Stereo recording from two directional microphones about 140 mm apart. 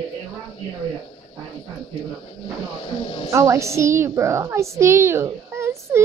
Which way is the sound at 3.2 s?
20° right (ahead or behind).